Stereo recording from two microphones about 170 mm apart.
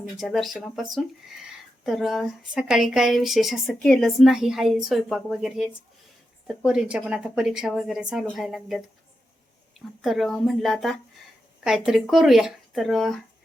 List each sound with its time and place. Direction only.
0.2 s speech: centre (ahead or behind)
10.0 s speech: centre (ahead or behind)